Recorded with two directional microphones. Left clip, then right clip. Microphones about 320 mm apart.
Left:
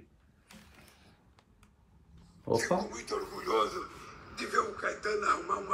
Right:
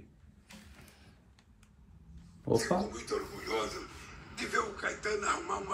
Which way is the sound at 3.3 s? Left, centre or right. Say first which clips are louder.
Left 5 dB; centre.